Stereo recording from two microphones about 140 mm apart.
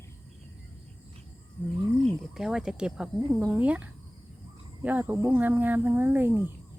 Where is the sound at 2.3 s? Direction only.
5° right (ahead or behind).